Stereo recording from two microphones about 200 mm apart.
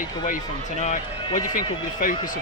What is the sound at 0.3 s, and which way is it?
Speech, 40° left (ahead or behind).